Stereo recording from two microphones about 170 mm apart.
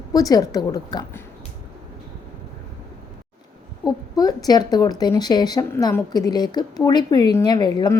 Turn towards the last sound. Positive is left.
turn(degrees=25)  # may be behind; listen again after turning